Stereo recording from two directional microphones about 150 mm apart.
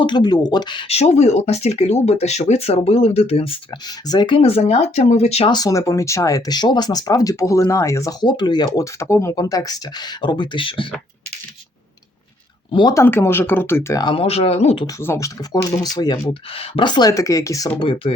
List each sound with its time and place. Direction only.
0.0 s speech: 30° left (ahead or behind)
4.4 s speech: 40° left (ahead or behind)
5.5 s speech: 25° left (ahead or behind)
12.9 s speech: 15° left (ahead or behind)
14.0 s speech: 35° left (ahead or behind)
14.9 s speech: 20° left (ahead or behind)
16.1 s speech: 40° left (ahead or behind); by 17.7 s 20° left (ahead or behind)
17.7 s speech: 35° left (ahead or behind)